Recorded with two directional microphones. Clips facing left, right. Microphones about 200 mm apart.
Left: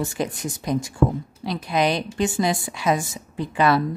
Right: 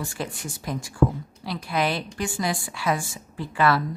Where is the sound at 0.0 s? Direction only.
20° left (ahead or behind).